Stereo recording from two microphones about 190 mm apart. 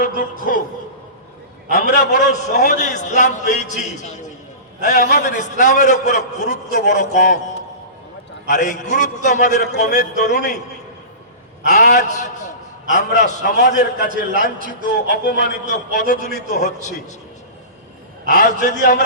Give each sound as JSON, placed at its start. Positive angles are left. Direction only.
{"t": 0.0, "sound": "a man's voice", "side_deg": 45}
{"t": 2.5, "sound": "a man's voice", "side_deg": 40}
{"t": 8.4, "sound": "a man's voice", "side_deg": 40}
{"t": 11.6, "sound": "a man's voice", "side_deg": 40}
{"t": 14.6, "sound": "a man's voice", "side_deg": -45}
{"t": 15.1, "sound": "a man's voice", "side_deg": 50}
{"t": 18.3, "sound": "a man's voice", "side_deg": 40}